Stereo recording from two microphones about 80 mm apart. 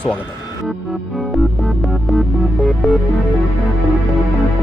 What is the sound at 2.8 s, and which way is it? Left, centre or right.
Speech, centre.